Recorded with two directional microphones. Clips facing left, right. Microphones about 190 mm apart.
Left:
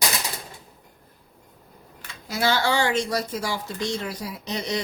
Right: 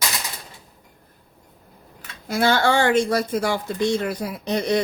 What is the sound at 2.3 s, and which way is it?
Speech, 55° right (ahead or behind).